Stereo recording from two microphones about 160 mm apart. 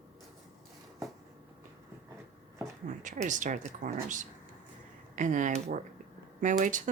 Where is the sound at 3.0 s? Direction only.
50° right (ahead or behind).